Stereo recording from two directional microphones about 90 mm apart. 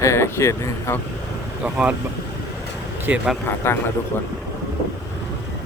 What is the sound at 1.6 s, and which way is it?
Speech, 10° right (ahead or behind).